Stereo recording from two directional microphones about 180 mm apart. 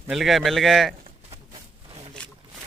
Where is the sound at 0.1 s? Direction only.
Centre (ahead or behind).